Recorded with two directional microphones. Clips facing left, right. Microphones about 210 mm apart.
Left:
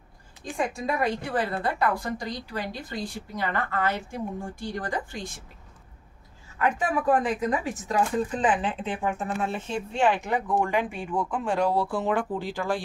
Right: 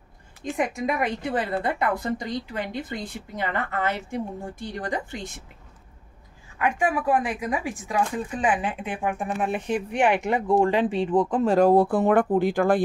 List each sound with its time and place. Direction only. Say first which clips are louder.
0.4 s a woman's voice: right 3 dB; 20° right (ahead or behind)
6.6 s a woman's voice: right 1 dB; 10° right (ahead or behind); by 12.8 s 55° right (ahead or behind)